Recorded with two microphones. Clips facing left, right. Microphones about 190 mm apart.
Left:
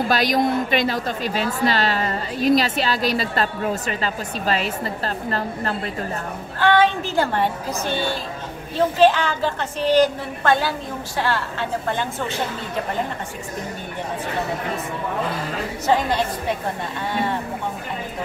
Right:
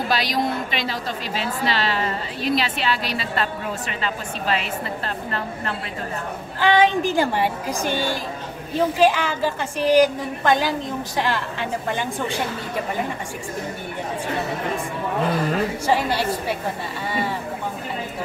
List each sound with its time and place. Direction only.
0.1 s a woman's voice: 50° left (ahead or behind)
6.6 s a woman's voice: 15° right (ahead or behind)
15.9 s a woman's voice: 10° right (ahead or behind)